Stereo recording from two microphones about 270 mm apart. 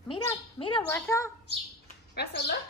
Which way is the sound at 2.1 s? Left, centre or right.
Left.